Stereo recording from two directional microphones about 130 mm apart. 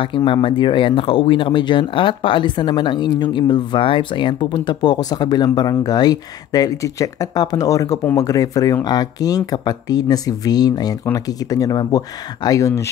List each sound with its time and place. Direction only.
0.0 s speech: 40° left (ahead or behind); by 12.9 s 25° left (ahead or behind)